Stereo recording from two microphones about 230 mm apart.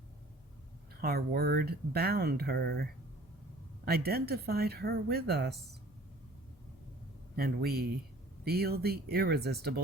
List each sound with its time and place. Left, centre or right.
1.0 s a woman's voice: right
7.3 s a woman's voice: right